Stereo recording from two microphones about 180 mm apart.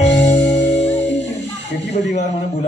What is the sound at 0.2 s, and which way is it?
Music, 40° left (ahead or behind).